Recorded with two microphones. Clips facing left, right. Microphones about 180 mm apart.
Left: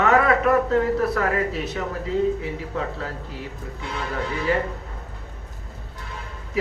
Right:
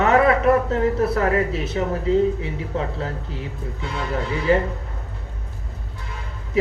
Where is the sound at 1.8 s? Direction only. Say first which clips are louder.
Right 8 dB; 30° right (ahead or behind).